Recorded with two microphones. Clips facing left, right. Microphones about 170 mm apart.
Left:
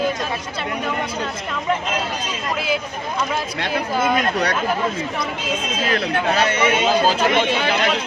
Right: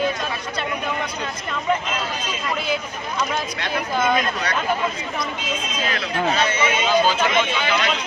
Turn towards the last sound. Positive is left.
turn(degrees=35)  # may be behind; listen again after turning